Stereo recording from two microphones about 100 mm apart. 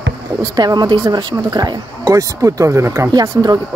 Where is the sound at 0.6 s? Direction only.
45° right (ahead or behind).